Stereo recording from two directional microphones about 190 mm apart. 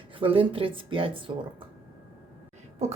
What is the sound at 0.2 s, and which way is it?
A woman's voice, 30° right (ahead or behind).